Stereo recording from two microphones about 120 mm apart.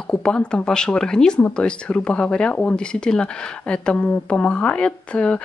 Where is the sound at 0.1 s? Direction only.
10° left (ahead or behind).